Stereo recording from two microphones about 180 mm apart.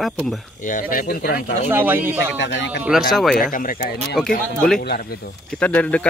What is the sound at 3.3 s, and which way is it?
Speech, 50° left (ahead or behind).